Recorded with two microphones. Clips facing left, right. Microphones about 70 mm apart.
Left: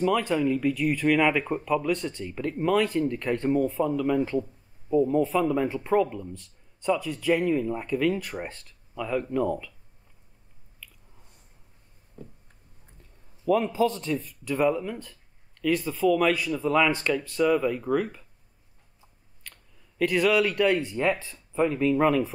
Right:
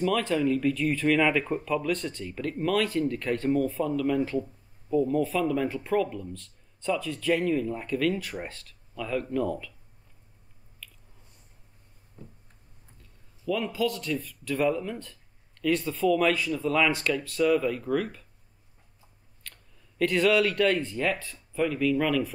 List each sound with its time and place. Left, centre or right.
0.0 s speech: centre
13.5 s a man's voice: left
14.2 s speech: centre
19.4 s speech: centre; by 22.3 s left